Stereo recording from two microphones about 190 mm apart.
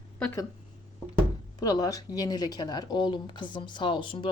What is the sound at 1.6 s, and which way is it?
Speech, 20° left (ahead or behind).